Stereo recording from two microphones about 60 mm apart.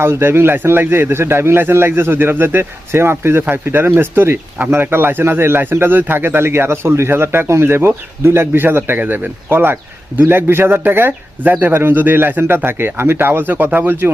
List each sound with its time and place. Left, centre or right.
0.0 s speech: right